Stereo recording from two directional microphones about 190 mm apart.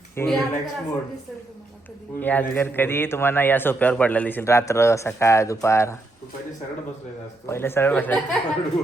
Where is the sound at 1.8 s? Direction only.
10° left (ahead or behind).